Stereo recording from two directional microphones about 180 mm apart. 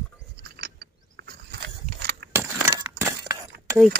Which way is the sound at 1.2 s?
65° right (ahead or behind).